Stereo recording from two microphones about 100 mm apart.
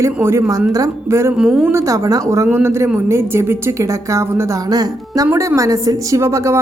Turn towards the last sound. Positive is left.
turn(degrees=-30)  # may be behind; listen again after turning